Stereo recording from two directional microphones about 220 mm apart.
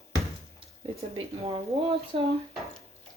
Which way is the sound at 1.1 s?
25° right (ahead or behind).